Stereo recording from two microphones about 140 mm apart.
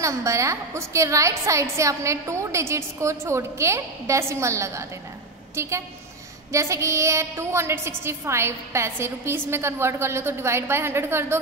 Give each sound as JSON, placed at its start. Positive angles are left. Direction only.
{"t": 0.0, "sound": "a woman's voice", "side_deg": -20}
{"t": 6.5, "sound": "a woman's voice", "side_deg": -20}